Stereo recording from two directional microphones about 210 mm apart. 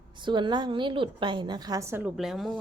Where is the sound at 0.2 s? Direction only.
20° right (ahead or behind).